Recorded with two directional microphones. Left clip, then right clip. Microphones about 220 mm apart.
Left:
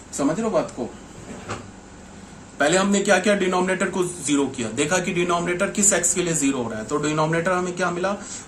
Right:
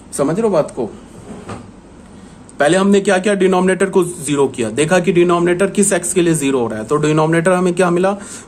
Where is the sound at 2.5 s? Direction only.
50° right (ahead or behind).